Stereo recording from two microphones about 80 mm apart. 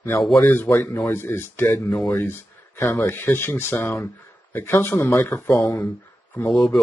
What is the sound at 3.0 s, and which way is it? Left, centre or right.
Speech, left.